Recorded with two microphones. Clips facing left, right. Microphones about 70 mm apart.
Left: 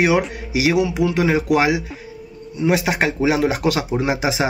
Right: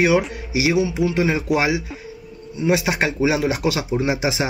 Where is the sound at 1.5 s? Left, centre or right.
Left.